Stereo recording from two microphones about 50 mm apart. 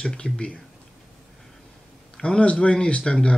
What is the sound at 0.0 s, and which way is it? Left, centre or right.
Speech, left.